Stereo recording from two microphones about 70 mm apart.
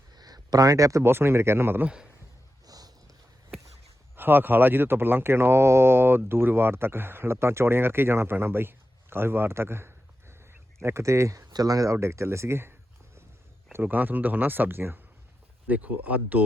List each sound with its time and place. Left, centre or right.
0.2 s a sound: right
1.0 s speech: right
1.8 s a man's voice: centre
2.6 s boat: right
4.1 s speech: right
11.5 s speech: right
11.9 s speech: right
13.8 s speech: right